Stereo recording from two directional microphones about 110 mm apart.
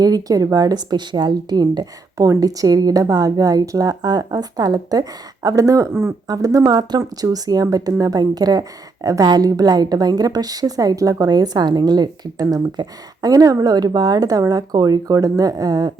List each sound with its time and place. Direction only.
0.0 s a woman's voice: 35° right (ahead or behind)
6.2 s a woman's voice: 35° right (ahead or behind)